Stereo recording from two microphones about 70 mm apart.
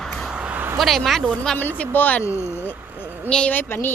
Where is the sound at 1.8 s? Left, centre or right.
Left.